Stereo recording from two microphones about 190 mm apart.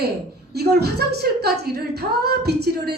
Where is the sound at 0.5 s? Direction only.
55° right (ahead or behind).